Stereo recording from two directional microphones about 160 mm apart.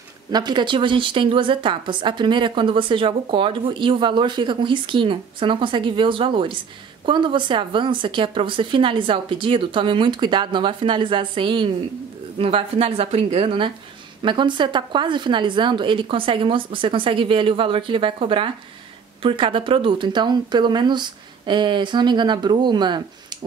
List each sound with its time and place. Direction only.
0.3 s a woman's voice: 25° right (ahead or behind)